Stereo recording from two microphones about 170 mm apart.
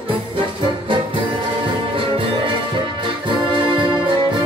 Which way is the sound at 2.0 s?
30° right (ahead or behind).